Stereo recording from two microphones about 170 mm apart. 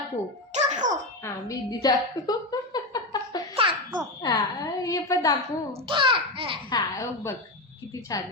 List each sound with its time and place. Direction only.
0.5 s music: 45° right (ahead or behind)
1.2 s a sound: 20° left (ahead or behind)
3.5 s babbling: 30° right (ahead or behind)
4.2 s a woman's voice: 20° left (ahead or behind)
5.9 s speech: 30° right (ahead or behind)
6.7 s a woman's voice: 20° left (ahead or behind)